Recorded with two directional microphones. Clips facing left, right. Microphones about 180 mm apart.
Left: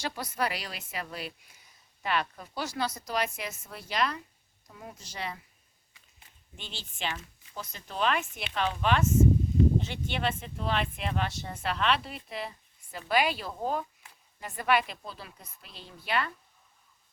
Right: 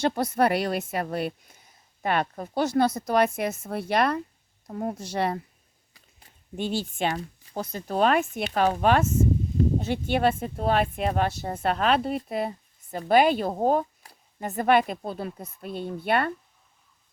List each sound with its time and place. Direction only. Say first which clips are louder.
0.0 s a woman's voice: right 10 dB; 50° right (ahead or behind)
5.9 s a sound: right 4 dB; 45° right (ahead or behind)
7.8 s speech: right 7 dB; 45° right (ahead or behind)